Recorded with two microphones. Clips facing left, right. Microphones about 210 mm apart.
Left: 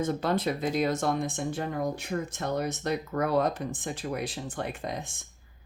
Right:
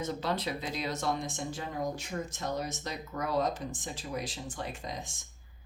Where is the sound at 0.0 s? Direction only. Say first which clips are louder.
Left 6 dB; 50° left (ahead or behind).